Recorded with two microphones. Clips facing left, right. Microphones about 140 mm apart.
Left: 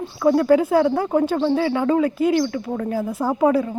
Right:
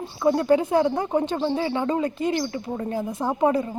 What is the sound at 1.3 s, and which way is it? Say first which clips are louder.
Speech: left 5 dB; 10° right (ahead or behind).